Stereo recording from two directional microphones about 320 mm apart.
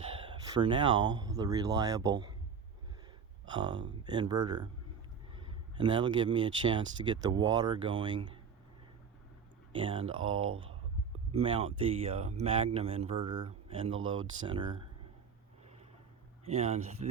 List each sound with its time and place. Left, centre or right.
0.2 s speech: centre
3.4 s speech: centre
5.7 s speech: centre
9.7 s speech: centre
10.3 s speech: right
11.3 s speech: centre
16.5 s speech: centre